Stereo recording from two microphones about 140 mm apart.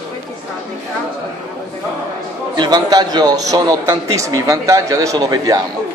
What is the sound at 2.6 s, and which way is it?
A man's voice, 30° right (ahead or behind).